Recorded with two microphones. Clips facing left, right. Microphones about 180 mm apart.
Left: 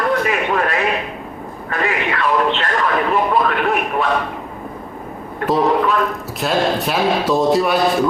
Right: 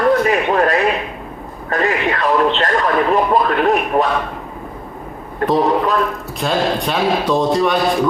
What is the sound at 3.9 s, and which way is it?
Speech, 35° right (ahead or behind).